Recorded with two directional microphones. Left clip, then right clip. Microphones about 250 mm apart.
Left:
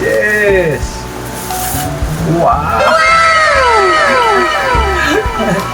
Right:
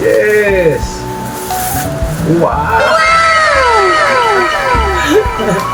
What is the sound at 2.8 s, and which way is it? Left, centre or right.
Cat, centre.